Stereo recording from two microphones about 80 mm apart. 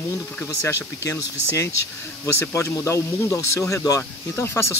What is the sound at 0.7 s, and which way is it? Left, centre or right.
Speech, left.